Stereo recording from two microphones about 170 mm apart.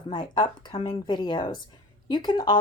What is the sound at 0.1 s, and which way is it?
Speech, 25° left (ahead or behind).